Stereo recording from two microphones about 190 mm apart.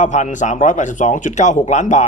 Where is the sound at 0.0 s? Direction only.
40° left (ahead or behind).